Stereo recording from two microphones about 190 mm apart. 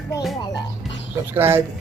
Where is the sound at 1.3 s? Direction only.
10° right (ahead or behind).